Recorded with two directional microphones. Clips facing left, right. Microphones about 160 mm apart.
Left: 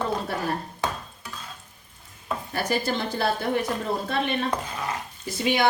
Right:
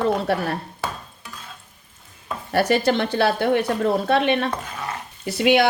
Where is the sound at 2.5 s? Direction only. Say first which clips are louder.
Right 8 dB; 70° right (ahead or behind).